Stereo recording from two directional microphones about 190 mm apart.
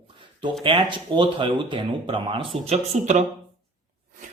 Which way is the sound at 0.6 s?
25° right (ahead or behind).